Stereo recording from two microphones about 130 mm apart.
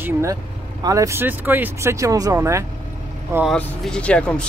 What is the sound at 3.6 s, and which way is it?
Speech, 10° left (ahead or behind).